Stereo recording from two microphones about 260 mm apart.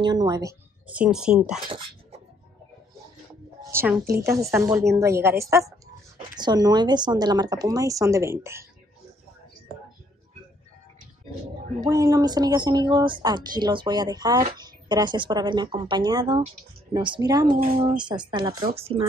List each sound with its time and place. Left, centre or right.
0.0 s speech: centre
3.7 s speech: centre
11.8 s speech: centre
17.5 s speech: right
17.8 s speech: centre